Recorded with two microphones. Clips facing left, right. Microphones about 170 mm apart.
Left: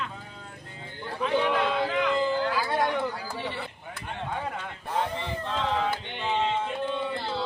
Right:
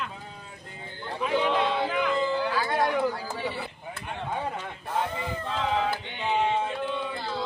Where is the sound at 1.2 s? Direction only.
5° right (ahead or behind).